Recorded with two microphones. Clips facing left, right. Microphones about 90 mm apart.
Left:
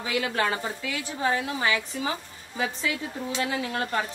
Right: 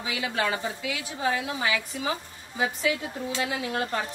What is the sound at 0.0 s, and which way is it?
A woman's voice, 45° left (ahead or behind).